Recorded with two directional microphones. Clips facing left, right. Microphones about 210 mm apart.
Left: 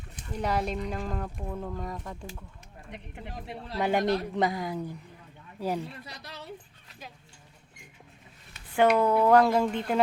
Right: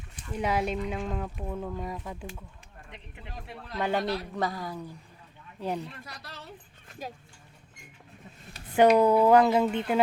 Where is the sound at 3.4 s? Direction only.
20° left (ahead or behind).